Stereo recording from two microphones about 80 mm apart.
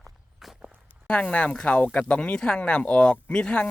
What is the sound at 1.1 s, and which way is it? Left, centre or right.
Speech, centre.